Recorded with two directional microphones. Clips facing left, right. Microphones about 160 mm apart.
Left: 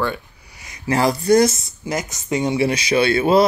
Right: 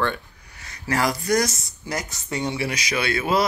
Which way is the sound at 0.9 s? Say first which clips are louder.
Left 6 dB; 25° left (ahead or behind).